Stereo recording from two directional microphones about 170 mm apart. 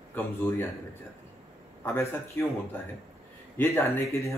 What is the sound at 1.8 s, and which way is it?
Speech, 15° left (ahead or behind).